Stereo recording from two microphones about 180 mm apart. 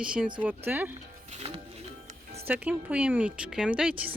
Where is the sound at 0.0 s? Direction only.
5° right (ahead or behind).